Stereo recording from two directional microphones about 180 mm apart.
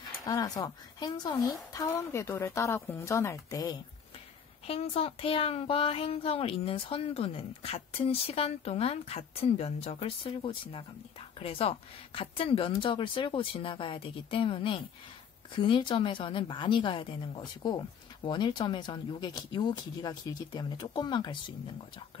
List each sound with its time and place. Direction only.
0.2 s speech: 20° left (ahead or behind)
4.6 s speech: 35° left (ahead or behind)